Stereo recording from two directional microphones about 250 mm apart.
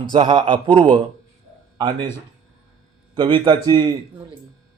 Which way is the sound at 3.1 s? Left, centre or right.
Centre.